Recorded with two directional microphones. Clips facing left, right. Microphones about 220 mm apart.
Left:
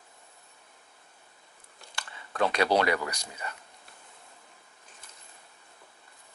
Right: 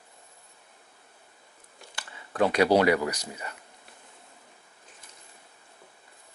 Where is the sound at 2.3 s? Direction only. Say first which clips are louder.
Right 4 dB; 15° right (ahead or behind).